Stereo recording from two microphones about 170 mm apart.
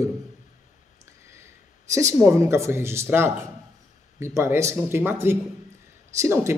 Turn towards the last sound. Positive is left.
turn(degrees=-15)  # may be behind; listen again after turning